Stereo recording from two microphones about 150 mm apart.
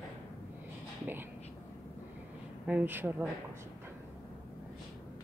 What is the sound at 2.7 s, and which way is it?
Speech, 10° right (ahead or behind).